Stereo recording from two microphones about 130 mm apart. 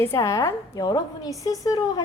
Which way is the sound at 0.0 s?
20° left (ahead or behind).